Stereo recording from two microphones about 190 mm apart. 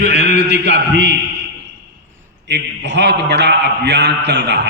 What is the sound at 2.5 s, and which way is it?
A man's voice, 65° right (ahead or behind).